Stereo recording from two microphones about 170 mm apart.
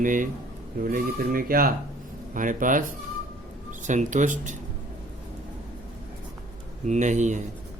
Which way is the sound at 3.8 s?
45° right (ahead or behind).